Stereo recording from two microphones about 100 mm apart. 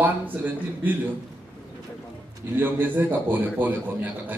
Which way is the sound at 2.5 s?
20° right (ahead or behind).